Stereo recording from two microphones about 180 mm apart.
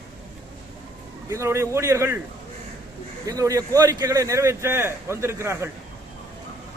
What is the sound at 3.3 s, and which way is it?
A man's voice, 20° right (ahead or behind).